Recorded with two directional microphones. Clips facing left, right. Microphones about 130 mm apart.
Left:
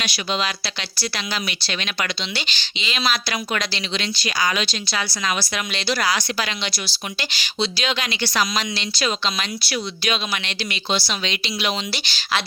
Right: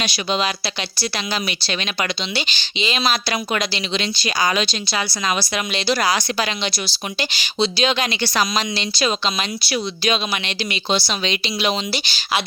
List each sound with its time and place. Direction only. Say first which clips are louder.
0.0 s speech: right 3 dB; 25° right (ahead or behind)
3.6 s speech: right 4 dB; 10° right (ahead or behind)
3.9 s speech: right 2 dB; 25° right (ahead or behind)